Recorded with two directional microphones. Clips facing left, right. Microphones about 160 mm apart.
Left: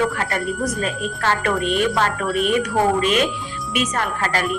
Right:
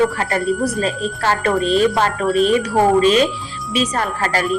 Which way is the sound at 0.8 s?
30° right (ahead or behind).